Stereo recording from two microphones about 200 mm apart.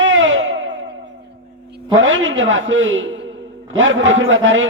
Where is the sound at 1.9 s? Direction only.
70° right (ahead or behind).